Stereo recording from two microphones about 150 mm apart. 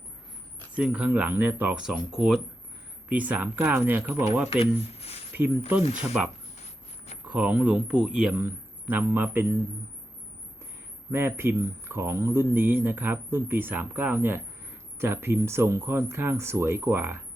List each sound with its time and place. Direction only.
0.8 s speech: 5° right (ahead or behind)
4.4 s speech: 40° left (ahead or behind)
5.3 s speech: 15° right (ahead or behind)
7.3 s speech: 5° right (ahead or behind)
11.1 s speech: 15° right (ahead or behind)